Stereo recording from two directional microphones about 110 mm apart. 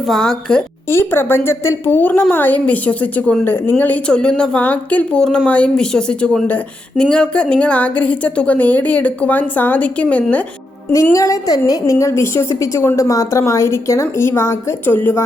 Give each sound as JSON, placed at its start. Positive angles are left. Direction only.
{"t": 0.0, "sound": "a woman's voice", "side_deg": 5}
{"t": 0.9, "sound": "a woman's voice", "side_deg": 20}
{"t": 11.0, "sound": "a woman's voice", "side_deg": 30}